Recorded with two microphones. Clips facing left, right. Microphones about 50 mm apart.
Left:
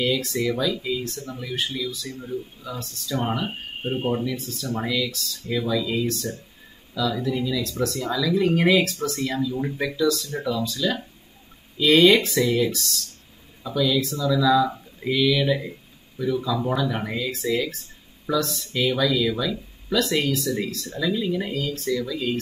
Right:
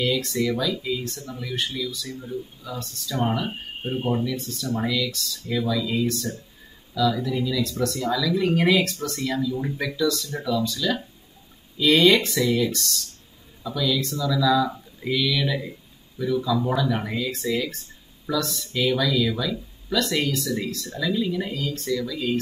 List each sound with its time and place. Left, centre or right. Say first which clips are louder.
0.0 s speech: even; centre
4.4 s speech: right 2 dB; centre
10.0 s speech: left 2 dB; centre
10.3 s speech: right 1 dB; centre
10.6 s speech: even; centre